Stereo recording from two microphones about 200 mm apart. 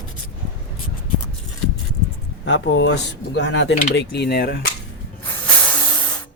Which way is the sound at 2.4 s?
60° left (ahead or behind).